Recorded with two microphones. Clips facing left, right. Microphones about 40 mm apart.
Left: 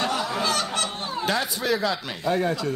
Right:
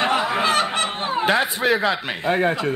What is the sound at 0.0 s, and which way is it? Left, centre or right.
Speech, right.